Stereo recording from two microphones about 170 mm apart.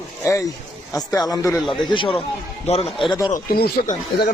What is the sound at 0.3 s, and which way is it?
Speech, 20° left (ahead or behind).